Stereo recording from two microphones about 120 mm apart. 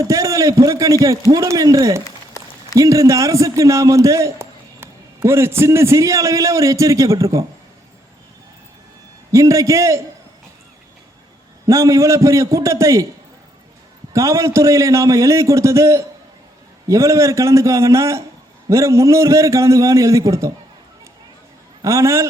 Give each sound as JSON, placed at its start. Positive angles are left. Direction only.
{"t": 0.0, "sound": "a man's voice", "side_deg": -25}
{"t": 9.3, "sound": "a man's voice", "side_deg": -25}
{"t": 11.6, "sound": "a man's voice", "side_deg": -25}
{"t": 14.1, "sound": "a man's voice", "side_deg": -25}
{"t": 21.8, "sound": "a man's voice", "side_deg": -25}